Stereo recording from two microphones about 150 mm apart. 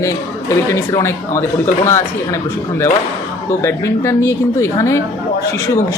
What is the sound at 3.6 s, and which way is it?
Speech, 20° left (ahead or behind).